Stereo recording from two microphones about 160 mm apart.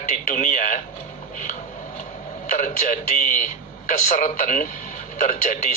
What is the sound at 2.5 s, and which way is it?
A man's voice, 50° left (ahead or behind).